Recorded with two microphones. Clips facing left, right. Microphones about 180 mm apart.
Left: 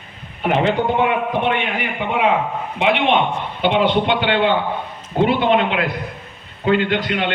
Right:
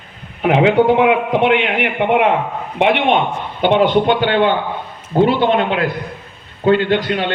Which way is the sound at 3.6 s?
45° right (ahead or behind).